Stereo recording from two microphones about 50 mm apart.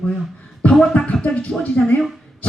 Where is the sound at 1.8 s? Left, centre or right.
Left.